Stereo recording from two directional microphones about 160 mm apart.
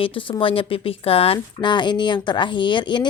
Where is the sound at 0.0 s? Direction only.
35° left (ahead or behind).